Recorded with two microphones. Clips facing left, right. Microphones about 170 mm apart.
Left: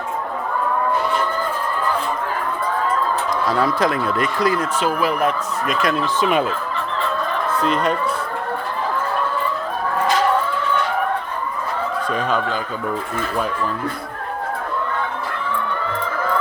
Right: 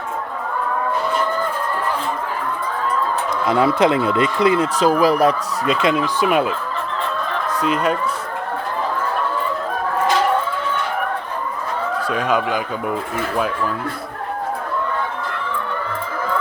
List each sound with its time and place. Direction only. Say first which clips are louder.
3.4 s speech: right 4 dB; 20° right (ahead or behind)
5.9 s speech: right 1 dB; 10° right (ahead or behind)
7.6 s speech: right 1 dB; 10° right (ahead or behind)
12.0 s speech: right 2 dB; 10° right (ahead or behind)